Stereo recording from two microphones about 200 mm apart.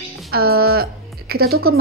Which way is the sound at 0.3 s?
50° right (ahead or behind).